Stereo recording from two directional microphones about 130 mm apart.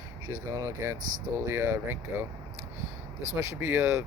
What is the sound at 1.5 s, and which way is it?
Speech, 20° right (ahead or behind).